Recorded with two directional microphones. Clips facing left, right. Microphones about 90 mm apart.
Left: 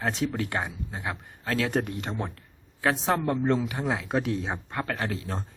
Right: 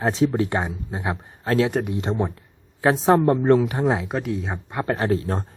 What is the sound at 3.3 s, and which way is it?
Speech, 60° right (ahead or behind).